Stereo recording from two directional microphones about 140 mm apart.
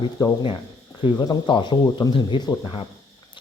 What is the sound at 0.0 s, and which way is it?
Speech, 30° left (ahead or behind).